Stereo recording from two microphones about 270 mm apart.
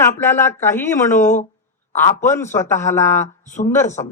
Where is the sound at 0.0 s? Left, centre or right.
Centre.